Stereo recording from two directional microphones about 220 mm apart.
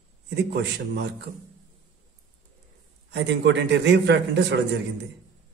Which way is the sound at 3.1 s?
55° right (ahead or behind).